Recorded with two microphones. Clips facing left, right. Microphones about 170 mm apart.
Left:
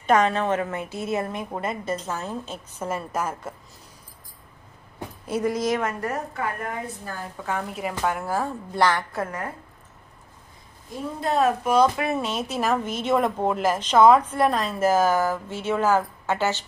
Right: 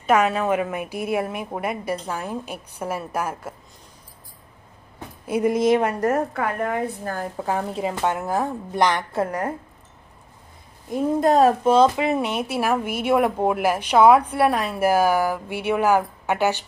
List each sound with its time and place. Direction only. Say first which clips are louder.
0.0 s speech: right 1 dB; 5° right (ahead or behind)
5.2 s speech: right 4 dB; 10° right (ahead or behind)
5.5 s a woman's voice: right 8 dB; 25° right (ahead or behind)
6.0 s a woman's voice: right 6 dB; 60° right (ahead or behind)
7.3 s a woman's voice: right 2 dB; 35° right (ahead or behind)
11.1 s speech: right 5 dB; 40° right (ahead or behind)
11.6 s speech: right 3 dB; 25° right (ahead or behind)